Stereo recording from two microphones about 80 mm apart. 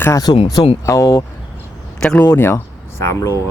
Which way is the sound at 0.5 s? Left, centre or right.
Left.